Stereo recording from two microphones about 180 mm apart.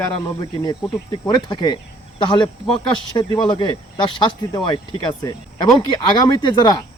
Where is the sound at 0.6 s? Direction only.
25° left (ahead or behind).